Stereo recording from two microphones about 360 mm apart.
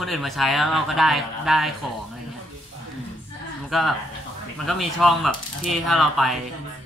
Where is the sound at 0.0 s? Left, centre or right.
Centre.